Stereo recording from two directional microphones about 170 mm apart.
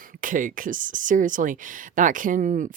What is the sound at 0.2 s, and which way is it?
A woman's voice, 50° right (ahead or behind).